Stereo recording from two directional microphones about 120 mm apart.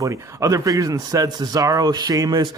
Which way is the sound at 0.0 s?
25° right (ahead or behind).